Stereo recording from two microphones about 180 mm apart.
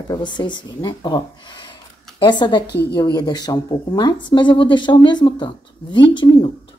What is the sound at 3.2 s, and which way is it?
Speech, 20° left (ahead or behind).